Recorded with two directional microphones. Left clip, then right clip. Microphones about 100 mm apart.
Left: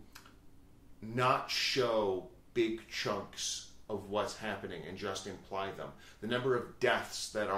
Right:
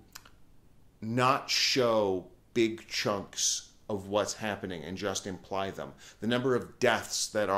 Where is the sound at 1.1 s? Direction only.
40° right (ahead or behind).